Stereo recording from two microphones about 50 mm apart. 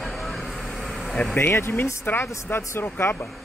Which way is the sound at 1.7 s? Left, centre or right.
Left.